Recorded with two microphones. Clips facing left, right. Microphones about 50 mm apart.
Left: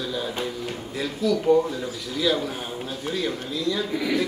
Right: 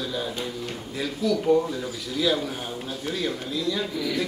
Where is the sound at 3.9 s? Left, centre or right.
Left.